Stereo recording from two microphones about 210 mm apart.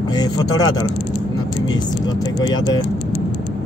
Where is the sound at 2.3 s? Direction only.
20° left (ahead or behind).